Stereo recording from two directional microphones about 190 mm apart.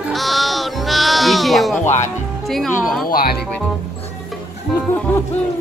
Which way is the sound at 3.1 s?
50° left (ahead or behind).